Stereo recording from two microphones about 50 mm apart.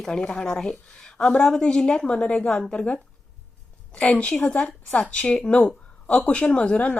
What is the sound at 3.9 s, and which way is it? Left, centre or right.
Speech, left.